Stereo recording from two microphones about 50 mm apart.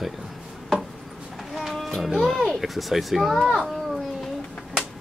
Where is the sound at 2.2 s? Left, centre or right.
Centre.